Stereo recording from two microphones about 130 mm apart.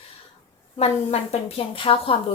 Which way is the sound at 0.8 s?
50° left (ahead or behind).